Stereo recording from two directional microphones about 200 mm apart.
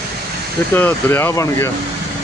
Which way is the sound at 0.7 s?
10° left (ahead or behind).